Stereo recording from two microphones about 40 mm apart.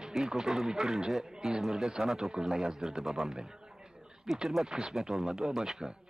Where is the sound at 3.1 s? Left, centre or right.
Centre.